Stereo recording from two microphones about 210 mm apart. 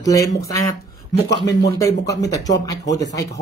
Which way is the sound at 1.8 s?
15° left (ahead or behind).